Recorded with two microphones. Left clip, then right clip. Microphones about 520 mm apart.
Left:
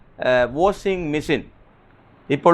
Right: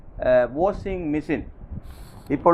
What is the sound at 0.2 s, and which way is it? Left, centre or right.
Speech, left.